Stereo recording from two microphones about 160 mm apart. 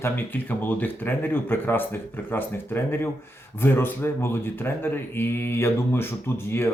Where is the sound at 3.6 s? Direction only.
15° left (ahead or behind).